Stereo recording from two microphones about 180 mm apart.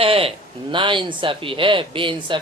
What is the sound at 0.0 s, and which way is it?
A man's voice, 30° right (ahead or behind).